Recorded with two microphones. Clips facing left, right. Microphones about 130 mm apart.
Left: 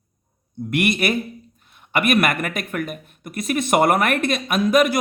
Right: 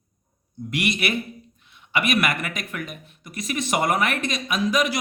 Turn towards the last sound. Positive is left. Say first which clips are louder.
# left 5 dB
turn(degrees=55)  # may be behind; listen again after turning